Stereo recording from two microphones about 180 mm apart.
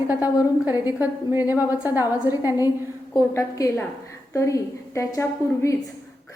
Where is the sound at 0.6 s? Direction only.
10° right (ahead or behind).